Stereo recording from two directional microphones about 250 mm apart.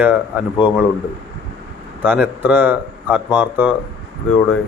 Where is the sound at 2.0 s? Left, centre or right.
Centre.